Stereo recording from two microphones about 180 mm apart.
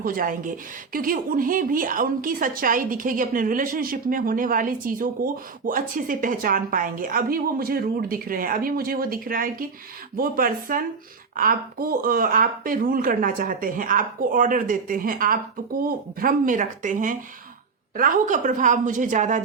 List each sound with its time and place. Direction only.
0.0 s a woman's voice: 50° right (ahead or behind)